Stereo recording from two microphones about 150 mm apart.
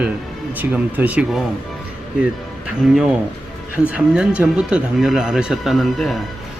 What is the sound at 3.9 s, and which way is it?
Speech, 10° right (ahead or behind).